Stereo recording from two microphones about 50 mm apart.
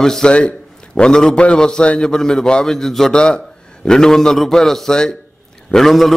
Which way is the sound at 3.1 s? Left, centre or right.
Centre.